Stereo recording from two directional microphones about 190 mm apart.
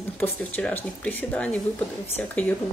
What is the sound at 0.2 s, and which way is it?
A woman's voice, 10° left (ahead or behind).